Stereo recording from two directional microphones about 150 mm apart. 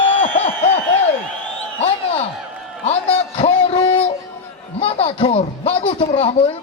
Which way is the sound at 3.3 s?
40° left (ahead or behind).